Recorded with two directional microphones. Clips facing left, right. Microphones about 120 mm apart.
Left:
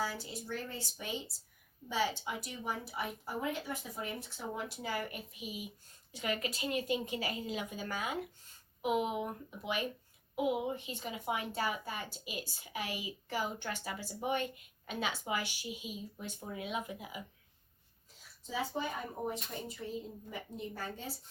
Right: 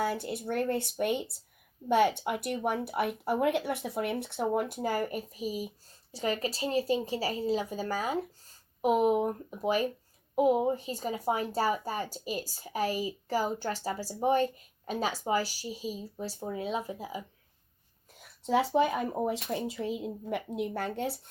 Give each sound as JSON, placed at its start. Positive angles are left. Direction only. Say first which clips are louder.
{"t": 0.0, "sound": "speech", "louder": "right 8 dB", "side_deg": -60}
{"t": 18.1, "sound": "speech", "louder": "right 14 dB", "side_deg": -65}